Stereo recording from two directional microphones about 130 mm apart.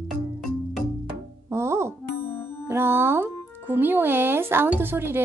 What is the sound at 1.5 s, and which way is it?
Music, 20° right (ahead or behind).